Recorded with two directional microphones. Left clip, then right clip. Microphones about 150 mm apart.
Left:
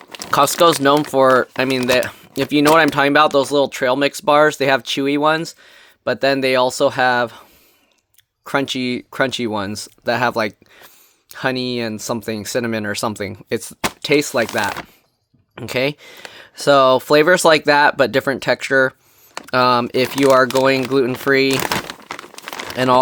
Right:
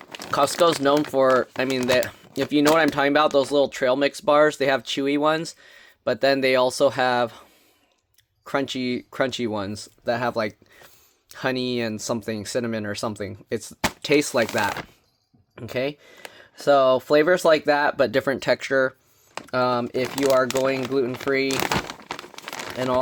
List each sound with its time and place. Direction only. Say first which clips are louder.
0.0 s a sound: left 4 dB; 15° left (ahead or behind)
0.3 s speech: left 6 dB; 40° left (ahead or behind)
8.4 s speech: left 5 dB; 35° left (ahead or behind)
14.0 s speech: left 4 dB; 25° left (ahead or behind)
15.5 s speech: left 7 dB; 50° left (ahead or behind)
19.5 s speech: left 8 dB; 60° left (ahead or behind)
22.1 s crumpling: left 4 dB; 5° left (ahead or behind)
22.7 s speech: left 9 dB; 55° left (ahead or behind)